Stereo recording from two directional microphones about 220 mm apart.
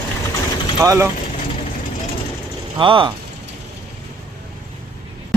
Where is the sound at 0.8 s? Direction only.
15° right (ahead or behind).